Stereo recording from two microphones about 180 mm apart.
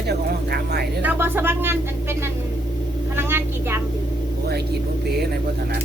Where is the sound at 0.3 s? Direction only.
60° right (ahead or behind).